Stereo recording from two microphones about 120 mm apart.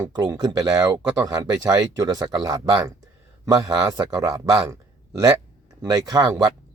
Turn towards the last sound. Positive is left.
turn(degrees=-35)  # may be behind; listen again after turning